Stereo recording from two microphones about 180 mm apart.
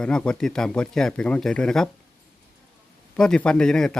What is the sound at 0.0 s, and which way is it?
Speech, 5° left (ahead or behind).